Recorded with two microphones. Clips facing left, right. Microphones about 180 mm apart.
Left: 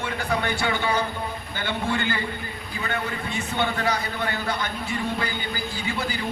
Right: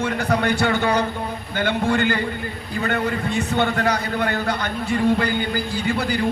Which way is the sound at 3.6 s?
55° right (ahead or behind).